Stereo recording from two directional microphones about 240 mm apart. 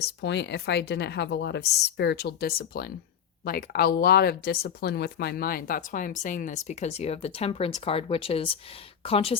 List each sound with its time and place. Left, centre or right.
0.0 s speech: left